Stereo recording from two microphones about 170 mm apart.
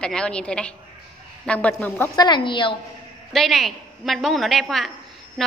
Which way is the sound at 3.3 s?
Centre (ahead or behind).